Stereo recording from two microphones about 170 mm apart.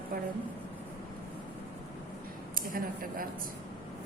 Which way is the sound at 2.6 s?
55° right (ahead or behind).